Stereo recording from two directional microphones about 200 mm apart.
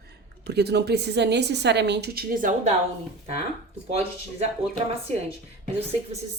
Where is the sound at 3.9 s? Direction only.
35° right (ahead or behind).